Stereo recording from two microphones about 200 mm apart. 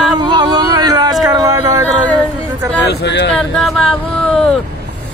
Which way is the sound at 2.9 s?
55° left (ahead or behind).